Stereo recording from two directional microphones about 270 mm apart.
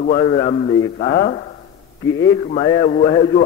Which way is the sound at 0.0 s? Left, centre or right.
Left.